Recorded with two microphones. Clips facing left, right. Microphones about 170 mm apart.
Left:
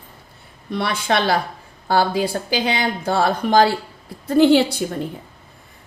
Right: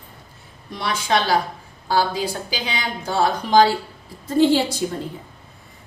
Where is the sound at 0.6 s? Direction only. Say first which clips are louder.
Left 2 dB; 60° left (ahead or behind).